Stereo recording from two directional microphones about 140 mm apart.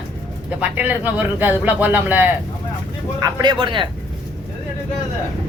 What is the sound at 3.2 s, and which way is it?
Speech, 30° right (ahead or behind).